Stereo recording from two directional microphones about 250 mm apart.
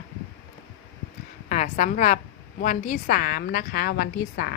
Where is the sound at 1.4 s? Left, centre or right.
Left.